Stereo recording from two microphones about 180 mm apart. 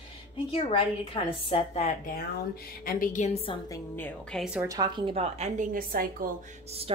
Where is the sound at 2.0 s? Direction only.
55° left (ahead or behind); by 3.8 s 30° left (ahead or behind).